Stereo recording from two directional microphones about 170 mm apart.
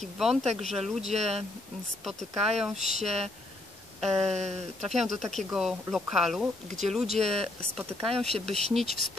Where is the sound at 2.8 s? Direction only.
40° right (ahead or behind).